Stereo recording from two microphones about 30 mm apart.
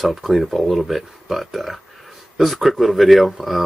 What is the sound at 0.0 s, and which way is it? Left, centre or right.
Speech, centre.